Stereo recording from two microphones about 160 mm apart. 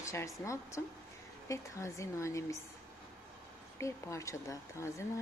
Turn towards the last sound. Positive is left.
turn(degrees=20)  # may be behind; listen again after turning